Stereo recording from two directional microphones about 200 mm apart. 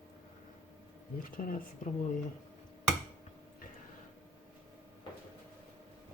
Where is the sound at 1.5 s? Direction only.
45° left (ahead or behind).